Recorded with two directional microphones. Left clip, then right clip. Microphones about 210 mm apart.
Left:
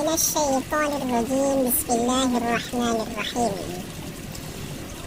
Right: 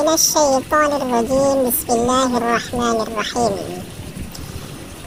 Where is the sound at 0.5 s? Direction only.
15° right (ahead or behind).